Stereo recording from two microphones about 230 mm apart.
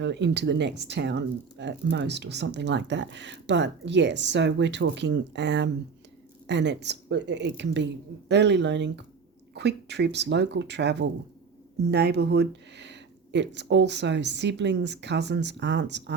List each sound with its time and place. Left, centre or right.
0.0 s speech: right